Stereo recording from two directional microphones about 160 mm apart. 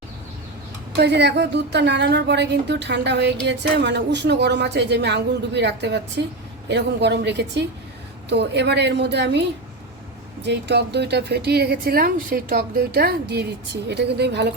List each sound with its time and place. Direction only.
0.9 s speech: 90° right